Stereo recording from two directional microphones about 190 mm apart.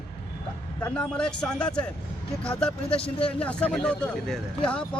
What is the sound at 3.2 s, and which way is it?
Speech, 5° left (ahead or behind).